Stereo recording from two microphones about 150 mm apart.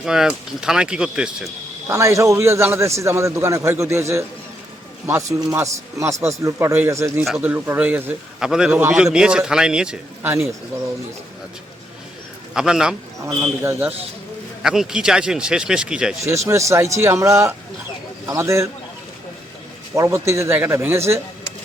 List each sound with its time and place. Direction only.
0.0 s speech: 5° right (ahead or behind)
1.9 s a man's voice: 20° right (ahead or behind)
10.2 s a man's voice: 15° right (ahead or behind)
12.5 s speech: 5° right (ahead or behind)
13.4 s a man's voice: 15° right (ahead or behind)
16.2 s a man's voice: 20° right (ahead or behind)
19.9 s a man's voice: 20° right (ahead or behind)